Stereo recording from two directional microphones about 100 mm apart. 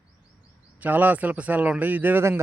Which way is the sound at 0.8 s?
15° right (ahead or behind).